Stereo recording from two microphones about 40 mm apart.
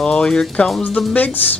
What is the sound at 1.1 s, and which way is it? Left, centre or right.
Speech, left.